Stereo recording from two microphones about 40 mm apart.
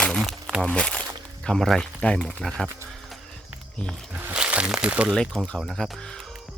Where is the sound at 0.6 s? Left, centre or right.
Left.